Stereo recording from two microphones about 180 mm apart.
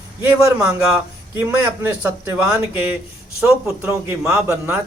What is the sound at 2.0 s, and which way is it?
Speech, 15° right (ahead or behind).